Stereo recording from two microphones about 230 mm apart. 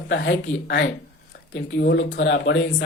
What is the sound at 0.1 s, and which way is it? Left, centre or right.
Speech, left.